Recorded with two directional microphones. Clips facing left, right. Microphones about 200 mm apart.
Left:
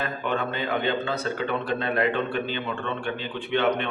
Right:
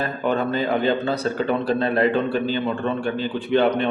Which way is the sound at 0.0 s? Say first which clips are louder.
Right 5 dB; 35° right (ahead or behind).